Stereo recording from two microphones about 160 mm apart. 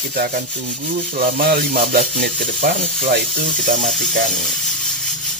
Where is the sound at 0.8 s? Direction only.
60° right (ahead or behind).